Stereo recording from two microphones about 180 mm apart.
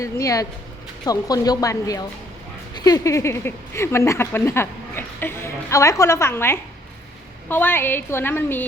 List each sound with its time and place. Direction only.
0.0 s speech: 20° left (ahead or behind)